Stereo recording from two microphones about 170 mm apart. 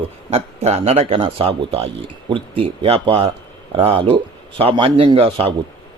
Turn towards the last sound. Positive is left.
turn(degrees=-30)  # may be behind; listen again after turning